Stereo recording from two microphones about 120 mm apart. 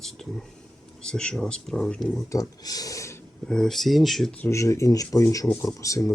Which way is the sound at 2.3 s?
30° left (ahead or behind).